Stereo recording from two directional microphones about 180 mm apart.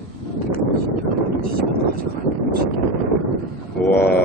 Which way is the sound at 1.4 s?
55° right (ahead or behind).